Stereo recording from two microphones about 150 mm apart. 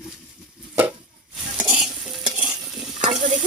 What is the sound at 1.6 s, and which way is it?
Stir, 5° right (ahead or behind).